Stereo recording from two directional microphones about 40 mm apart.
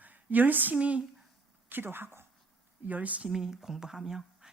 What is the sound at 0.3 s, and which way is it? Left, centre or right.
Speech, right.